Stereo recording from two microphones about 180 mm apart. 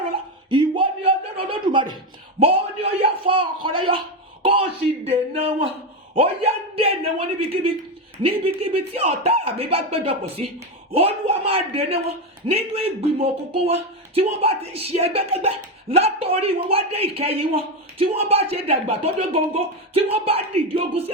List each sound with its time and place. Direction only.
0.0 s a sound: 30° right (ahead or behind)
9.0 s music: 35° right (ahead or behind)
10.9 s speech: 35° right (ahead or behind)